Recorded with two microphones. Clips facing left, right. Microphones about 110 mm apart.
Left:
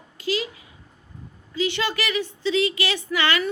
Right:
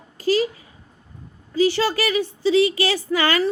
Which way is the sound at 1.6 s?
35° right (ahead or behind).